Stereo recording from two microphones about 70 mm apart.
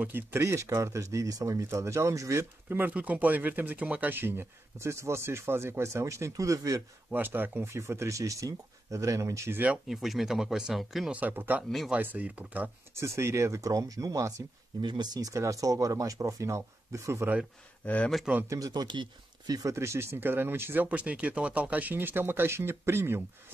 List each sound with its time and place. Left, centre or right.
0.0 s speech: right
0.4 s speech: right
2.9 s speech: right
7.1 s speech: right
7.6 s speech: right
9.8 s speech: centre
11.1 s speech: right
12.9 s speech: right
14.8 s speech: right
17.8 s speech: centre
18.7 s speech: right
19.7 s speech: right
20.8 s speech: centre; by 23.2 s right